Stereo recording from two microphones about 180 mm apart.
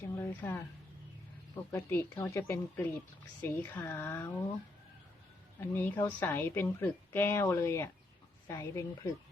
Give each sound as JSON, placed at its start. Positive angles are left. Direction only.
{"t": 0.0, "sound": "a woman's voice", "side_deg": 15}
{"t": 1.7, "sound": "a woman's voice", "side_deg": 15}
{"t": 5.5, "sound": "a woman's voice", "side_deg": 10}